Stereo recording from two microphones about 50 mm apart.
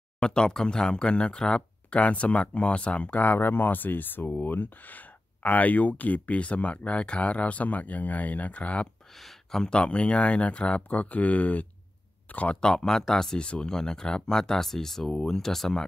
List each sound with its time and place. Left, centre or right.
0.2 s speech: centre
9.1 s a sound: centre
9.6 s speech: centre
12.5 s speech: centre